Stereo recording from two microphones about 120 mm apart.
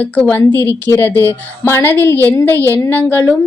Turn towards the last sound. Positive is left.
turn(degrees=15)  # may be behind; listen again after turning